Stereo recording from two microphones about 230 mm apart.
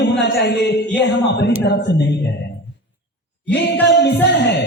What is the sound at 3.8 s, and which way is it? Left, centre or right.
Speech, left.